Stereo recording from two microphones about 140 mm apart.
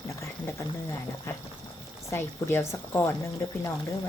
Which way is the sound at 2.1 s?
15° left (ahead or behind).